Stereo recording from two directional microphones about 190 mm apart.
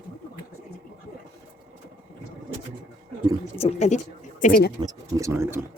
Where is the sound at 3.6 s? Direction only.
35° left (ahead or behind).